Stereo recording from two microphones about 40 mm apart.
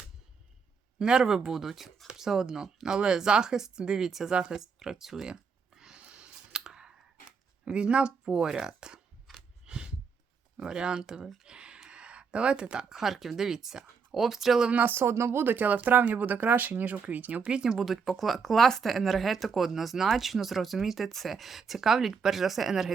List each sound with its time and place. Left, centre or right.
0.9 s speech: centre
5.3 s a sound: centre
6.0 s clicking: right
8.2 s speech: centre
9.6 s a sound: right
10.7 s speech: right
11.4 s a sound: right
12.9 s speech: centre
14.8 s speech: right
15.5 s speech: right
17.5 s speech: centre
17.8 s speech: centre